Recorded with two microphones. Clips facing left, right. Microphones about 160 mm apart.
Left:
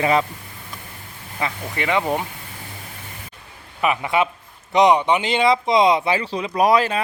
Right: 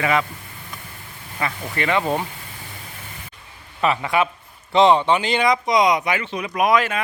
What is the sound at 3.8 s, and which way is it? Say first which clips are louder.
Speech: even; 15° left (ahead or behind).